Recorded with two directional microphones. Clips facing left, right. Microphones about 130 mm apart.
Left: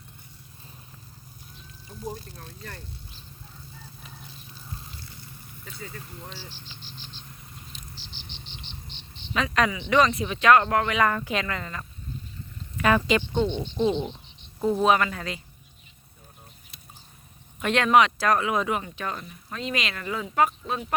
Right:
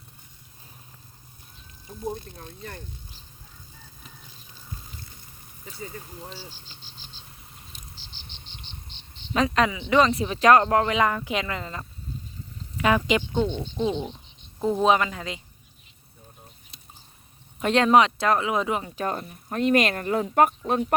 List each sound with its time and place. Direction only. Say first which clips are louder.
2.0 s speech: right 4 dB; 20° right (ahead or behind)
5.8 s speech: right 3 dB; 15° right (ahead or behind)
7.7 s insect: left 2 dB; 45° right (ahead or behind)
9.3 s speech: right 2 dB; 35° right (ahead or behind)
11.0 s speech: even; 15° right (ahead or behind)
12.7 s a sound: even; 15° right (ahead or behind)
13.1 s speech: even; 10° right (ahead or behind)
17.6 s speech: right 2 dB; 30° right (ahead or behind)
18.9 s speech: right 5 dB; 40° right (ahead or behind)